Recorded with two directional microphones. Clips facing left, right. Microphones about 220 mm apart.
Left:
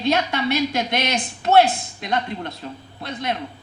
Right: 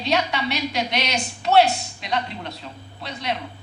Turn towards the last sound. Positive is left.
turn(degrees=50)  # may be behind; listen again after turning